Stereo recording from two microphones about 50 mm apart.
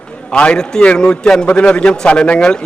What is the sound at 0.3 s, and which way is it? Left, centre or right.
A man's voice, left.